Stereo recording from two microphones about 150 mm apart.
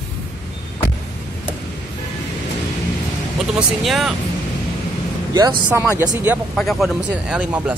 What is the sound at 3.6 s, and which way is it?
Speech, 5° right (ahead or behind).